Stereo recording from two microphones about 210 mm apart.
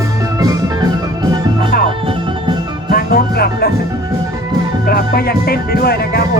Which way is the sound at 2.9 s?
45° left (ahead or behind).